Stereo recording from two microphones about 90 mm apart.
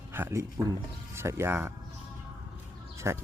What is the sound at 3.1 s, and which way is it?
Speech, 30° right (ahead or behind).